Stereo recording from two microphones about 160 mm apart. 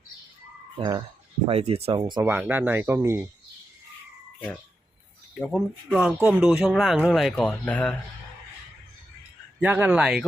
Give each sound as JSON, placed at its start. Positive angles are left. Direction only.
{"t": 0.8, "sound": "speech", "side_deg": -25}
{"t": 1.5, "sound": "speech", "side_deg": -40}
{"t": 2.0, "sound": "speech", "side_deg": -25}
{"t": 2.2, "sound": "speech", "side_deg": -10}
{"t": 5.3, "sound": "speech", "side_deg": 0}
{"t": 9.6, "sound": "speech", "side_deg": -10}